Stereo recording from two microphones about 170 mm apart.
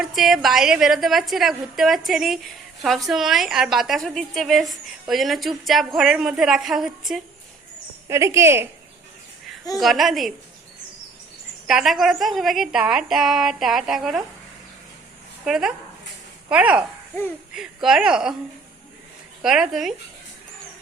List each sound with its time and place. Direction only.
0.0 s a woman's voice: centre (ahead or behind)
8.0 s speech: 15° right (ahead or behind)
9.7 s a woman's voice: centre (ahead or behind)
11.7 s a woman's voice: centre (ahead or behind)
15.4 s a woman's voice: 5° right (ahead or behind)
19.4 s a woman's voice: 5° right (ahead or behind)